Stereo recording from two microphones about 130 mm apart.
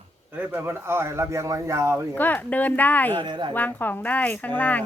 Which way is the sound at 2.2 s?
15° left (ahead or behind).